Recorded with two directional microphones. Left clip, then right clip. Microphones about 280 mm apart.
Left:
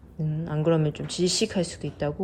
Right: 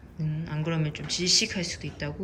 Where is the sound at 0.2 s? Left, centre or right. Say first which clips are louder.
Left 5 dB; centre.